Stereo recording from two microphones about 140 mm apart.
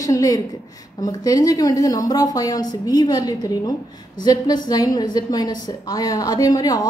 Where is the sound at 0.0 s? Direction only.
25° left (ahead or behind).